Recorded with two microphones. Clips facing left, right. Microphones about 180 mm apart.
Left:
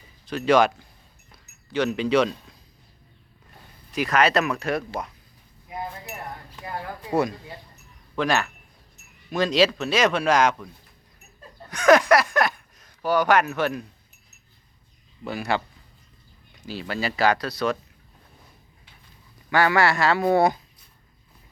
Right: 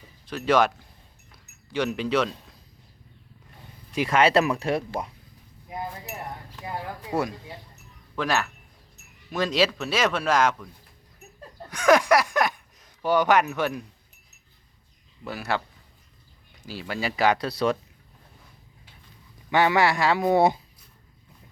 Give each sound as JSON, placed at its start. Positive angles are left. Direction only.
{"t": 0.3, "sound": "speech", "side_deg": -5}
{"t": 1.3, "sound": "a sound", "side_deg": -10}
{"t": 3.9, "sound": "speech", "side_deg": -25}
{"t": 8.1, "sound": "speech", "side_deg": -5}
{"t": 11.7, "sound": "a sound", "side_deg": -10}
{"t": 13.6, "sound": "speech", "side_deg": -10}
{"t": 15.3, "sound": "speech", "side_deg": -5}
{"t": 16.6, "sound": "speech", "side_deg": -10}
{"t": 19.5, "sound": "speech", "side_deg": -20}